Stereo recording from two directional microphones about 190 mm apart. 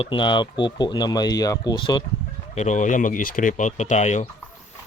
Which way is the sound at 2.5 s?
40° left (ahead or behind).